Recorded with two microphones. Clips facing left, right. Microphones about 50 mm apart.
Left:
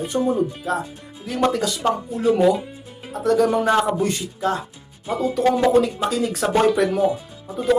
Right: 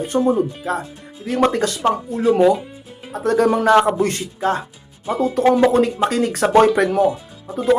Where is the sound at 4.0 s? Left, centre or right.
Right.